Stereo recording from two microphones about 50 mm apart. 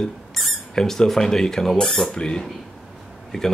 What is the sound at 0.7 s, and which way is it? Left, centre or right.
Speech, centre.